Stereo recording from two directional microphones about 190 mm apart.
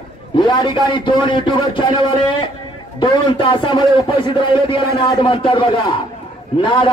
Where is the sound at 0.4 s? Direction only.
25° left (ahead or behind).